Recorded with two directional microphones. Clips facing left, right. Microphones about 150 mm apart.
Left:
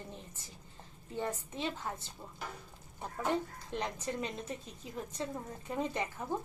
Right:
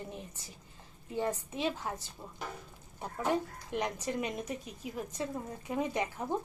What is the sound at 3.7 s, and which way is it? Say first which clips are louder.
Speech: right 4 dB; 15° right (ahead or behind).